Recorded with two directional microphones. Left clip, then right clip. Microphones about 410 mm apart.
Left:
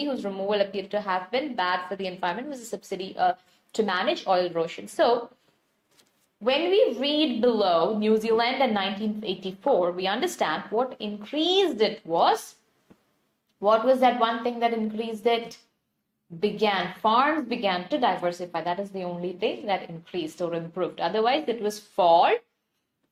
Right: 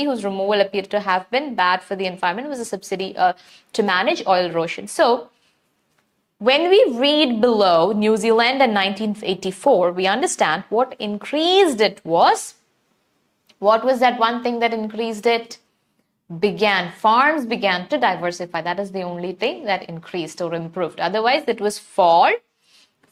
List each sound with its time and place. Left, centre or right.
0.0 s a woman's voice: right
6.4 s a woman's voice: right
13.6 s a woman's voice: right